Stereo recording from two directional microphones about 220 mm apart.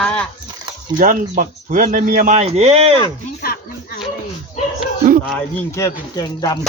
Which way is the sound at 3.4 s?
45° left (ahead or behind).